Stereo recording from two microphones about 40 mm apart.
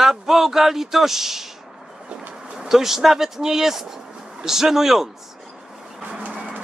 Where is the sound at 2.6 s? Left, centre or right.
Centre.